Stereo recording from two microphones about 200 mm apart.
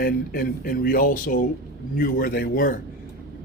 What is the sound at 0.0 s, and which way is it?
Speech, 50° left (ahead or behind).